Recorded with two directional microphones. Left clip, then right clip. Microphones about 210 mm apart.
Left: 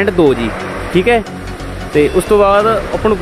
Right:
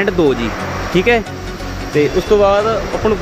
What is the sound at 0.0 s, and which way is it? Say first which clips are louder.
Speech: left 3 dB; 15° left (ahead or behind).